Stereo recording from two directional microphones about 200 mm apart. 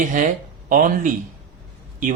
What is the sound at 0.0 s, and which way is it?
Speech, 40° right (ahead or behind).